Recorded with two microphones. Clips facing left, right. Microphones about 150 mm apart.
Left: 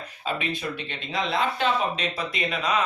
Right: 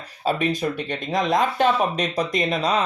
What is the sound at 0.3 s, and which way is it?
Speech, 40° right (ahead or behind).